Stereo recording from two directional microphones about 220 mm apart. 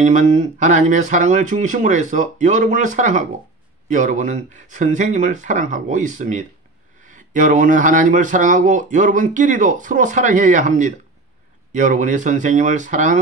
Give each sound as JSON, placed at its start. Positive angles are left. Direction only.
{"t": 0.0, "sound": "speech", "side_deg": -30}